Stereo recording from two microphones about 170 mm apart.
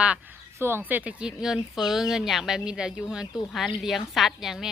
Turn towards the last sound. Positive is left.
turn(degrees=0)  # may be behind; listen again after turning